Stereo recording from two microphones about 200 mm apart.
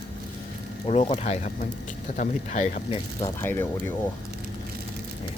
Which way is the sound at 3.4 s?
10° left (ahead or behind).